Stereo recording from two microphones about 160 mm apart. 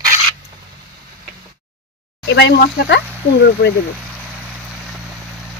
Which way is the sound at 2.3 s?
90° left.